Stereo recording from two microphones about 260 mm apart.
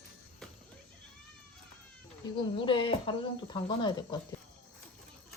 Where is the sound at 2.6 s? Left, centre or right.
Centre.